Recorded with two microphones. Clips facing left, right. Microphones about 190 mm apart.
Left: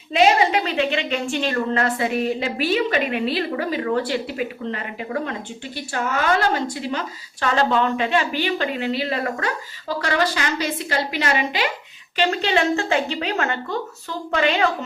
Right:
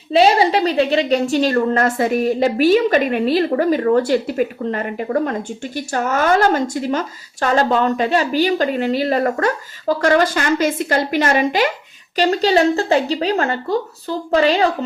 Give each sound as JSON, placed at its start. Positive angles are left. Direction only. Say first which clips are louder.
{"t": 0.1, "sound": "a woman's voice", "louder": "right 4 dB", "side_deg": -35}